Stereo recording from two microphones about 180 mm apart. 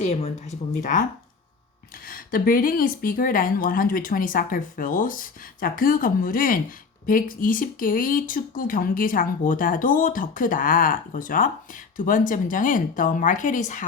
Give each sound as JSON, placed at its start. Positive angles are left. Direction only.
{"t": 0.0, "sound": "speech", "side_deg": 35}
{"t": 2.0, "sound": "speech", "side_deg": 55}